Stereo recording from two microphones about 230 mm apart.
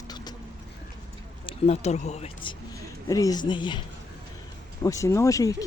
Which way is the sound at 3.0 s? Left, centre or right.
Centre.